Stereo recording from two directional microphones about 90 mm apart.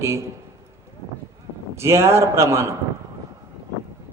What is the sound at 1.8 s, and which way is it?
Mantra, 30° right (ahead or behind).